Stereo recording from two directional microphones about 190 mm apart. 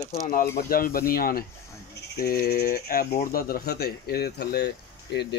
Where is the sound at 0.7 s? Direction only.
50° left (ahead or behind).